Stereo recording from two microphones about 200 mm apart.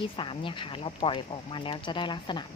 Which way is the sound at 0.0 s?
25° left (ahead or behind).